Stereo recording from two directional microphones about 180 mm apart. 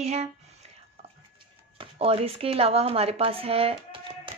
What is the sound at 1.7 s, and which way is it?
A woman's voice, 30° right (ahead or behind).